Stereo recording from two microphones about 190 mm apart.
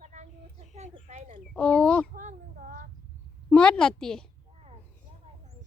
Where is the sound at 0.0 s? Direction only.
40° right (ahead or behind).